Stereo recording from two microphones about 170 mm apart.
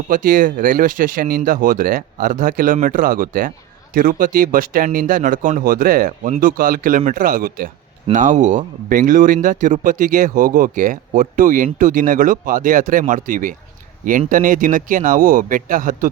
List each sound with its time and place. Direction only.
0.1 s speech: 55° right (ahead or behind)